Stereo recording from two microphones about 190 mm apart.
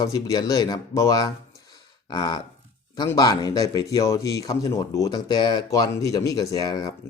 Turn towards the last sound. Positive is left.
turn(degrees=20)  # may be behind; listen again after turning